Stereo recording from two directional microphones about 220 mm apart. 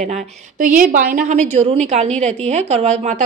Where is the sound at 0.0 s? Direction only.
35° right (ahead or behind).